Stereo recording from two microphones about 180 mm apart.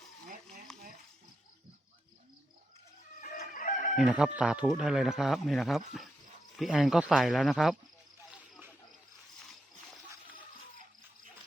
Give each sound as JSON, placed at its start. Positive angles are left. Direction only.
{"t": 0.7, "sound": "a sound", "side_deg": 5}
{"t": 3.3, "sound": "chicken", "side_deg": 50}
{"t": 3.9, "sound": "speech", "side_deg": -5}